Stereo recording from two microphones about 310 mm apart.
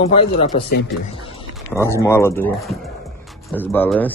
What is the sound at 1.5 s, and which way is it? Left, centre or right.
Speech, centre.